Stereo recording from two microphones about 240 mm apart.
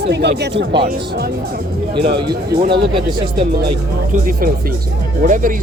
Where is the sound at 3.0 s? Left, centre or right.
Right.